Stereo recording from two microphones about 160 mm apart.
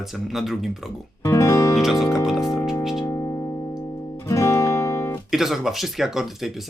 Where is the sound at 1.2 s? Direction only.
20° left (ahead or behind).